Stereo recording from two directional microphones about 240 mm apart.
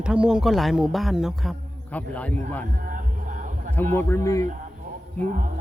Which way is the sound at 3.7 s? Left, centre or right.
Centre.